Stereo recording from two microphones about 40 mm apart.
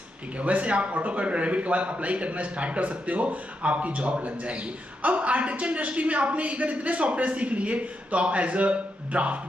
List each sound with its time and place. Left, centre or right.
0.4 s a man's voice: right